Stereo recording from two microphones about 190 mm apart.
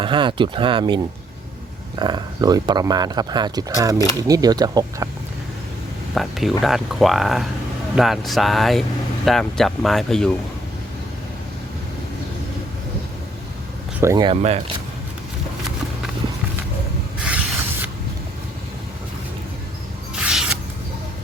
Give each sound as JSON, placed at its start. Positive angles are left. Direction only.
{"t": 0.0, "sound": "speech", "side_deg": -25}
{"t": 6.1, "sound": "speech", "side_deg": 0}
{"t": 14.0, "sound": "speech", "side_deg": -20}
{"t": 17.2, "sound": "spray", "side_deg": -5}
{"t": 20.1, "sound": "a sound", "side_deg": -5}